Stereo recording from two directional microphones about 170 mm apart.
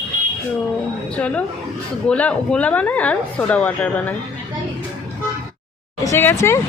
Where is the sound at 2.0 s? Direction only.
5° left (ahead or behind).